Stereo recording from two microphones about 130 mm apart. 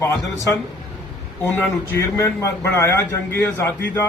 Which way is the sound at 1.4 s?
20° left (ahead or behind).